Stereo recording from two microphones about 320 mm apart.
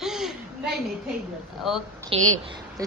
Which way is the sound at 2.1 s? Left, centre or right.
Centre.